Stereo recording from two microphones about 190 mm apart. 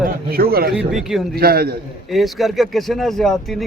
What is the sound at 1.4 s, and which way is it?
Speech, 55° right (ahead or behind).